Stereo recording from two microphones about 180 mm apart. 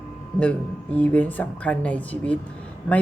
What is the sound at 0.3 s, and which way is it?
Speech, 5° left (ahead or behind).